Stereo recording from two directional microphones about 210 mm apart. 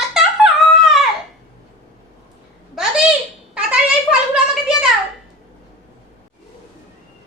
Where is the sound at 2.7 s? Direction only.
Centre (ahead or behind).